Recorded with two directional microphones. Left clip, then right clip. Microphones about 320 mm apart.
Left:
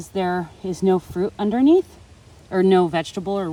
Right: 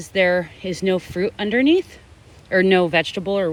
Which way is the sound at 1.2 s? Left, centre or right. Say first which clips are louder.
Right 1 dB; centre.